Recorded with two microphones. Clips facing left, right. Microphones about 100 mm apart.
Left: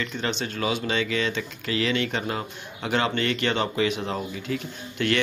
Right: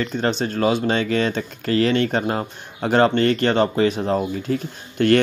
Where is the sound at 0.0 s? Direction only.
40° right (ahead or behind).